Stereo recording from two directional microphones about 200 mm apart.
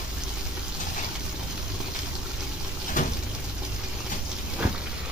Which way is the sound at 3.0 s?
40° left (ahead or behind).